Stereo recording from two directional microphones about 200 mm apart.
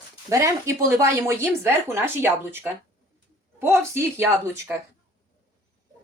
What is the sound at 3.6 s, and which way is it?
Speech, 10° right (ahead or behind).